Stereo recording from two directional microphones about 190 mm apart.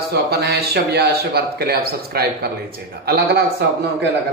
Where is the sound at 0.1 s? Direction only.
60° right (ahead or behind).